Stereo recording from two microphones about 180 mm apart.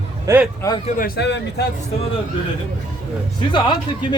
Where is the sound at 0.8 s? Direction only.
45° left (ahead or behind).